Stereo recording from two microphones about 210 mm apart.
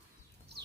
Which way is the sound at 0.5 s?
50° right (ahead or behind).